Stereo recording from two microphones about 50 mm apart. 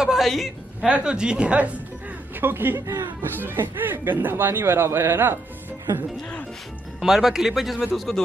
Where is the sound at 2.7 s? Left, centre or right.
Right.